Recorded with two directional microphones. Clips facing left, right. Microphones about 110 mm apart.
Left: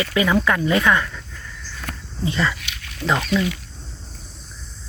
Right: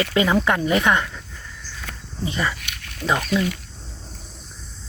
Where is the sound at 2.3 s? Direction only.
20° right (ahead or behind).